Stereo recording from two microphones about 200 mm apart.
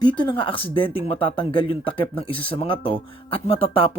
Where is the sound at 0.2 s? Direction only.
25° left (ahead or behind).